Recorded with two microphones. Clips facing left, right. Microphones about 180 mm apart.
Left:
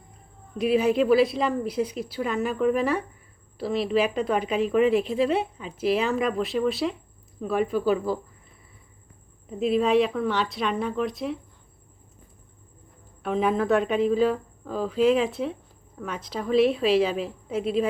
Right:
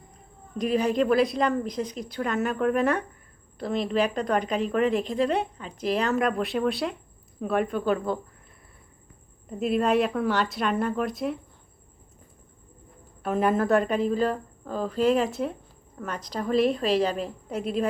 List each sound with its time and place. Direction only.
0.6 s a woman's voice: 5° left (ahead or behind)
9.5 s a woman's voice: centre (ahead or behind)
13.2 s a woman's voice: 5° right (ahead or behind)